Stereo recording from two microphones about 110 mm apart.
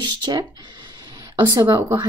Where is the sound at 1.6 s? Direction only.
40° right (ahead or behind).